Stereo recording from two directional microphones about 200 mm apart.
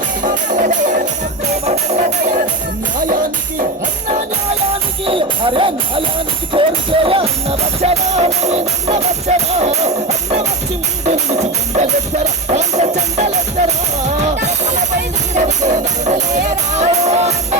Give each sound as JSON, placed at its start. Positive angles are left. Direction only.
{"t": 0.2, "sound": "music", "side_deg": -40}
{"t": 5.0, "sound": "speech", "side_deg": -25}
{"t": 6.5, "sound": "music", "side_deg": -25}
{"t": 15.4, "sound": "music", "side_deg": -35}